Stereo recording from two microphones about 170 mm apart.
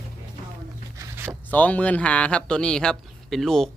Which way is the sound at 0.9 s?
15° right (ahead or behind).